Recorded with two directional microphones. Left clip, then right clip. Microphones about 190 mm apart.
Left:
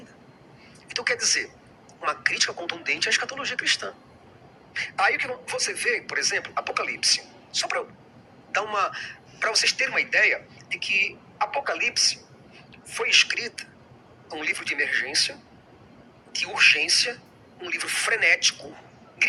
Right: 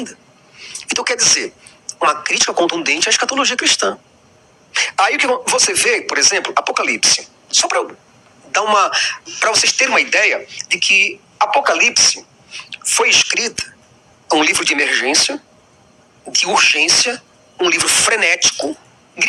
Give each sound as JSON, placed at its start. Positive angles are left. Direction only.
{"t": 0.6, "sound": "speech", "side_deg": -50}